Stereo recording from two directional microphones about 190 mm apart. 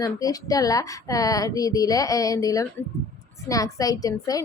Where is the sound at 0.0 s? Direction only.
20° left (ahead or behind).